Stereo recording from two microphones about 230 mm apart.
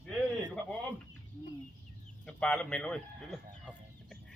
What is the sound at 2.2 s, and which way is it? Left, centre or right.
Speech, centre.